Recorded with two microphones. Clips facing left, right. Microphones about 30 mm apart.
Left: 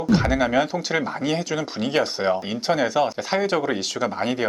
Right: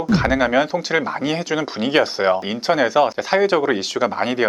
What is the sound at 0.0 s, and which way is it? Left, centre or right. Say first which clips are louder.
Speech: right 2 dB; centre.